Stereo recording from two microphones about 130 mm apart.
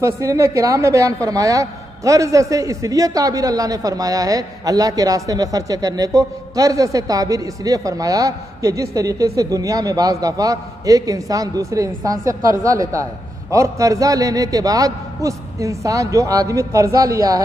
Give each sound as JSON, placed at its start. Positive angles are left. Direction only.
{"t": 0.0, "sound": "a woman's voice", "side_deg": -25}